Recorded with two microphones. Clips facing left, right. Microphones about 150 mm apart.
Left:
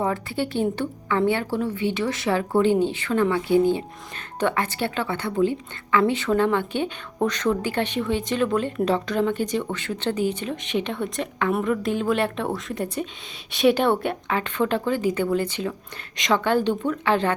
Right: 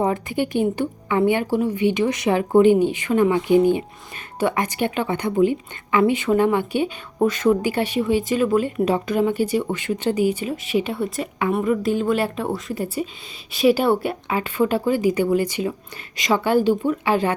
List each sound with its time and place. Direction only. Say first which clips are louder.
0.0 s a woman's voice: right 3 dB; 15° right (ahead or behind)